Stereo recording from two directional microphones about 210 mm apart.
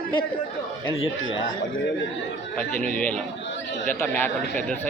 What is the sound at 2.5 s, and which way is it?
A man's voice, 5° left (ahead or behind).